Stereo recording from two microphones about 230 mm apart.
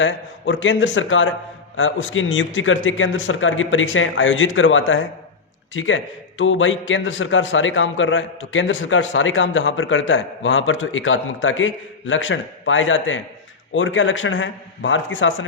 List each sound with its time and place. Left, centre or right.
0.0 s a man's voice: left